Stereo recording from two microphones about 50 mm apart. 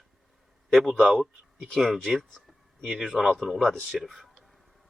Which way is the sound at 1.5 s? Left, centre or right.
Centre.